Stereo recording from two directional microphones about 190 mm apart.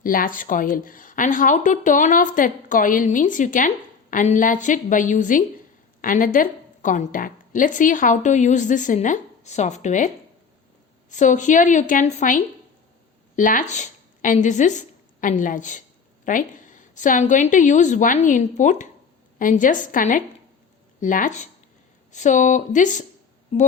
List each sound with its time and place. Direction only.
0.0 s a woman's voice: 45° left (ahead or behind)
11.1 s a woman's voice: 40° left (ahead or behind)